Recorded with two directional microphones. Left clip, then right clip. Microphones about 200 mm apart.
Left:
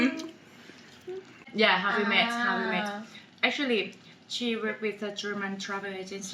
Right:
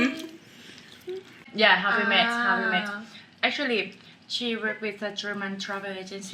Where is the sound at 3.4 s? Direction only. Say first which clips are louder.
Right 1 dB; 20° right (ahead or behind).